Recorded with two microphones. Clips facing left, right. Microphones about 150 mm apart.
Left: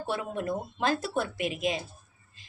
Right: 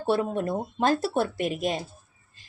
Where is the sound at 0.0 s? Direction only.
35° right (ahead or behind).